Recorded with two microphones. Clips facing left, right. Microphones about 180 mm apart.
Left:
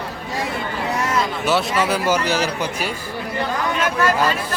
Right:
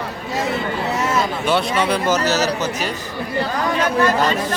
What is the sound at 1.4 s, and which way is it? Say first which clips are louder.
Speech: even; 5° left (ahead or behind).